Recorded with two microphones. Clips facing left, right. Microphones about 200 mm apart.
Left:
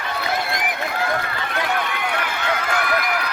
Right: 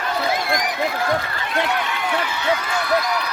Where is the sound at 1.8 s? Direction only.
55° left (ahead or behind).